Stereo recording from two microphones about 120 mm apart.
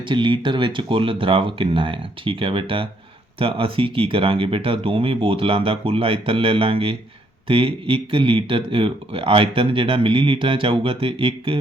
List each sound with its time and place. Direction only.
0.1 s speech: 40° right (ahead or behind)